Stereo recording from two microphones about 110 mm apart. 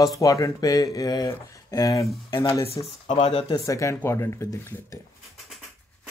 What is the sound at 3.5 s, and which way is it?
Speech, 30° left (ahead or behind).